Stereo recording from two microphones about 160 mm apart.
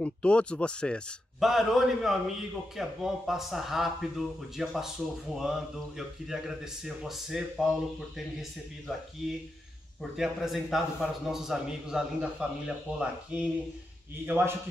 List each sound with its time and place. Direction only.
0.0 s speech: 5° left (ahead or behind)
10.1 s speech: centre (ahead or behind)